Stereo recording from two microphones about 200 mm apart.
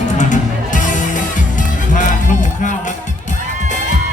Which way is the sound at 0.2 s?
40° left (ahead or behind).